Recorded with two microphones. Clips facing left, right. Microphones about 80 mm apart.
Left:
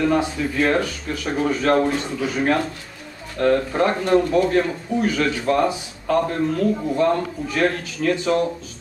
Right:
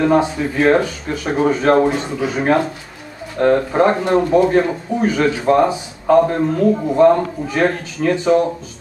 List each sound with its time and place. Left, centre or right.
0.0 s a man's voice: right